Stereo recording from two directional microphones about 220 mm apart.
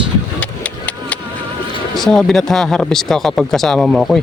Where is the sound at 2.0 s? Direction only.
Centre (ahead or behind).